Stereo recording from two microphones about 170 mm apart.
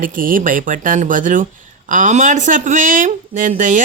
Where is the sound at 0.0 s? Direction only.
55° right (ahead or behind).